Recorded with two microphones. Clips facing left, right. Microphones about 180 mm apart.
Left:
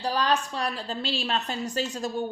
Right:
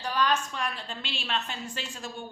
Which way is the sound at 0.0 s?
35° left (ahead or behind).